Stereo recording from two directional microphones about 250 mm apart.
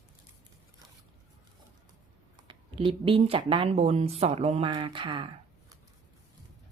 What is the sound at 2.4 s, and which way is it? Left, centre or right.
Speech, centre.